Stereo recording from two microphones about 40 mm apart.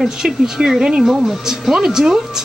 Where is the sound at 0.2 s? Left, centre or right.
Centre.